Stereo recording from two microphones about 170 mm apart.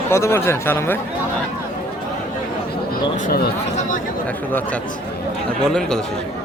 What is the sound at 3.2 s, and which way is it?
Speech, 65° left (ahead or behind).